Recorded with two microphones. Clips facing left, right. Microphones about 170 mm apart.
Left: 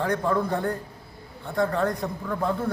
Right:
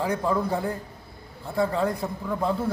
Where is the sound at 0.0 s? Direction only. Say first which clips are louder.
Left 1 dB; 5° right (ahead or behind).